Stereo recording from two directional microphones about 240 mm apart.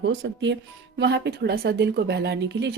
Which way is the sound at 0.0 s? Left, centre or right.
Right.